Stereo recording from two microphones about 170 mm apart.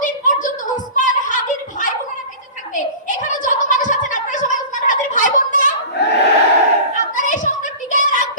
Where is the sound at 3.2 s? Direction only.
50° left (ahead or behind).